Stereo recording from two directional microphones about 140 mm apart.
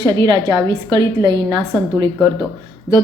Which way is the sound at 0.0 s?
30° right (ahead or behind).